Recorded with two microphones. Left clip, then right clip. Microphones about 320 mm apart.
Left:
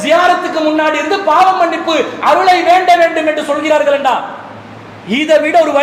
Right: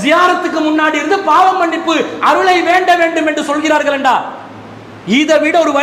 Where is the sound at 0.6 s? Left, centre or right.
Right.